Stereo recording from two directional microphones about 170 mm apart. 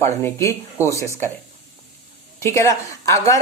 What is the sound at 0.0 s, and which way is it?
Speech, 15° left (ahead or behind).